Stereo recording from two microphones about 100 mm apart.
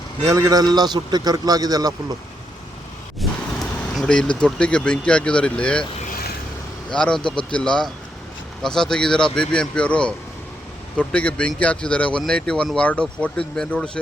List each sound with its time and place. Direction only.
0.3 s a man's voice: 35° right (ahead or behind)
3.2 s a sound: centre (ahead or behind)
4.0 s speech: 10° left (ahead or behind)
6.9 s speech: 10° left (ahead or behind)
7.2 s speech: 55° left (ahead or behind)
7.5 s speech: 10° left (ahead or behind)